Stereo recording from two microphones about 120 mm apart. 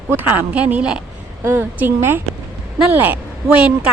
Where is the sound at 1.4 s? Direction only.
20° right (ahead or behind).